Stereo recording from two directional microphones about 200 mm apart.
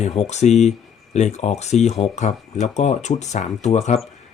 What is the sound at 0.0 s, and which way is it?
Speech, 35° left (ahead or behind).